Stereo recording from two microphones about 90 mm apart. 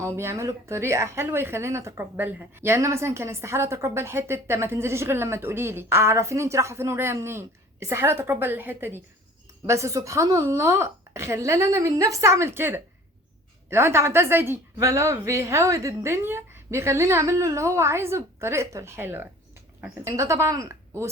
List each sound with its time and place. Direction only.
0.0 s a woman's voice: 30° right (ahead or behind)